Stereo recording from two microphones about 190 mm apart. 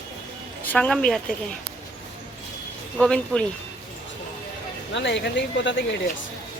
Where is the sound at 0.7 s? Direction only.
5° left (ahead or behind).